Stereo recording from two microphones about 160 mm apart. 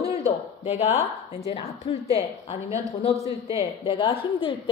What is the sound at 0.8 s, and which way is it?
Speech, 15° right (ahead or behind).